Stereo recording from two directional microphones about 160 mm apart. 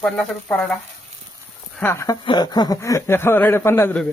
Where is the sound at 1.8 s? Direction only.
15° left (ahead or behind).